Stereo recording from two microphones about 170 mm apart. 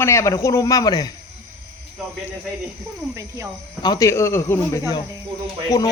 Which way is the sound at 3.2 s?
15° right (ahead or behind).